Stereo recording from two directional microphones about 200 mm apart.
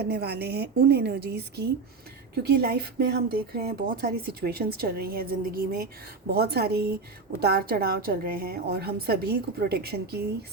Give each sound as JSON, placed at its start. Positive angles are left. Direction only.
{"t": 0.0, "sound": "a woman's voice", "side_deg": -55}